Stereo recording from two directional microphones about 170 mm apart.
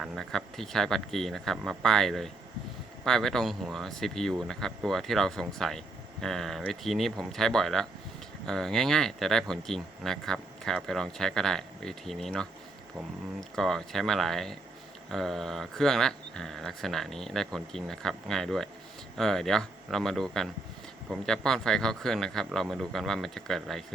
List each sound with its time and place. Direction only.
0.0 s speech: centre (ahead or behind)
13.6 s speech: centre (ahead or behind)